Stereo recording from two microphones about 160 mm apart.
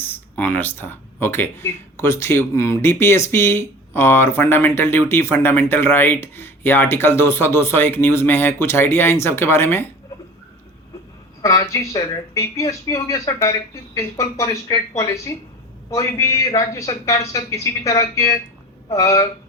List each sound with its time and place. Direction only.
0.0 s speech: 10° left (ahead or behind)
11.7 s a man's voice: 20° left (ahead or behind)